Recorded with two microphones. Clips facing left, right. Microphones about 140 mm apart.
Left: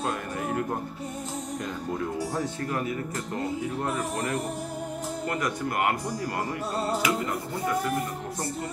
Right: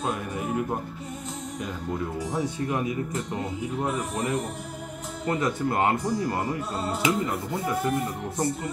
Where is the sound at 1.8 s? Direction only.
Centre (ahead or behind).